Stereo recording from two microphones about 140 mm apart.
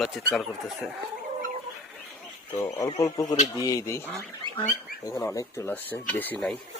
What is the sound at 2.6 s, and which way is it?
Speech, 20° left (ahead or behind).